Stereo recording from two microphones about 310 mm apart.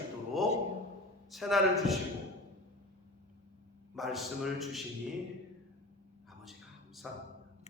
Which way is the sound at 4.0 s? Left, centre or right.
Centre.